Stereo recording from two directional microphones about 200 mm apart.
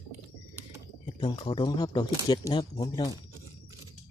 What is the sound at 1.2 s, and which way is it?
Speech, 25° left (ahead or behind).